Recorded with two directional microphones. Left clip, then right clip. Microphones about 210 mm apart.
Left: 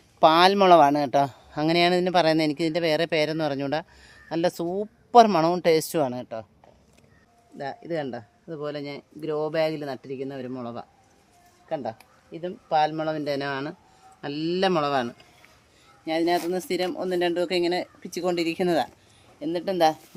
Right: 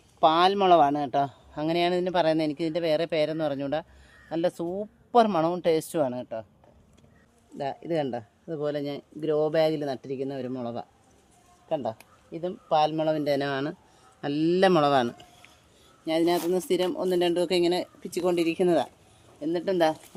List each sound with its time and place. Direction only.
0.2 s a man's voice: 50° left (ahead or behind)
7.6 s speech: 20° right (ahead or behind)
16.0 s speech: 10° right (ahead or behind); by 20.0 s 10° left (ahead or behind)